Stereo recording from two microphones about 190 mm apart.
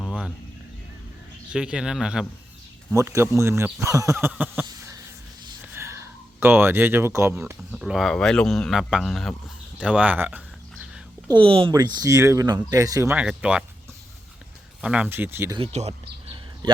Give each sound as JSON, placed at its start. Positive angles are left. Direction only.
{"t": 0.0, "sound": "a sound", "side_deg": 0}
{"t": 1.5, "sound": "speech", "side_deg": -5}
{"t": 2.9, "sound": "speech", "side_deg": -15}
{"t": 5.7, "sound": "speech", "side_deg": -15}
{"t": 11.3, "sound": "speech", "side_deg": -25}
{"t": 14.8, "sound": "speech", "side_deg": -5}
{"t": 15.5, "sound": "speech", "side_deg": -30}